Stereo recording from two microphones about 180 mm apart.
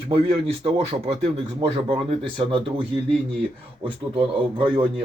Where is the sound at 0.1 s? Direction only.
30° right (ahead or behind).